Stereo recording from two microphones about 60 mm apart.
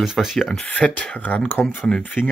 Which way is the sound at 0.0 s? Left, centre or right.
Centre.